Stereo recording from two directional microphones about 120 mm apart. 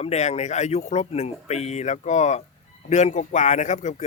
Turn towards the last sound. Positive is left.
turn(degrees=75)  # may be behind; listen again after turning